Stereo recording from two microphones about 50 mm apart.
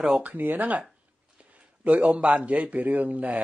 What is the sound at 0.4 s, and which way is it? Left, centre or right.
Speech, right.